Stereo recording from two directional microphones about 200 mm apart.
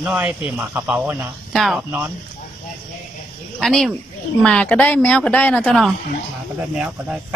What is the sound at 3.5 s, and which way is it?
Speech, centre (ahead or behind).